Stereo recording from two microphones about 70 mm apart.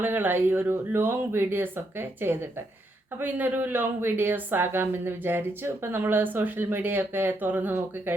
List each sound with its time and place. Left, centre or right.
0.0 s a woman's voice: right